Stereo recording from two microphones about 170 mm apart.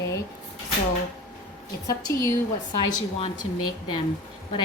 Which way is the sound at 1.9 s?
20° left (ahead or behind).